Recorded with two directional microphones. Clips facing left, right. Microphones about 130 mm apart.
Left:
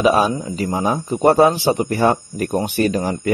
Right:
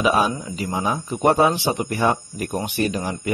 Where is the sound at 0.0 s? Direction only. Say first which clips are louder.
Left 4 dB; 35° left (ahead or behind).